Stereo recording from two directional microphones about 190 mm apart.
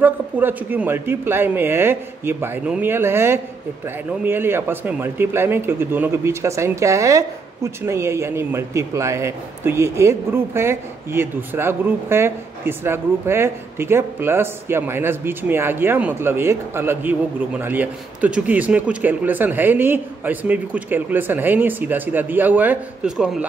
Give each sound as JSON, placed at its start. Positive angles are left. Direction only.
{"t": 0.0, "sound": "a man's voice", "side_deg": -10}